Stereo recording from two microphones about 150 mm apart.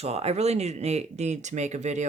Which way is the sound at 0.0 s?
45° right (ahead or behind).